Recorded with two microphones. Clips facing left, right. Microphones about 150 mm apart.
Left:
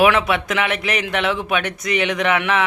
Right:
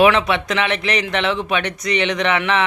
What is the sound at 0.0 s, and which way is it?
A man's voice, 5° left (ahead or behind).